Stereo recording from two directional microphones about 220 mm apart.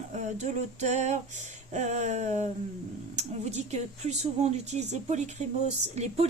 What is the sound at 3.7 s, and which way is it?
Speech, 30° right (ahead or behind).